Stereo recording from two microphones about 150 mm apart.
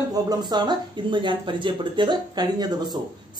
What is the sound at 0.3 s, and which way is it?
Speech, 30° right (ahead or behind).